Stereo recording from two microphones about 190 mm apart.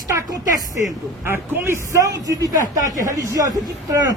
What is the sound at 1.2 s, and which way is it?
A man's voice, 15° right (ahead or behind).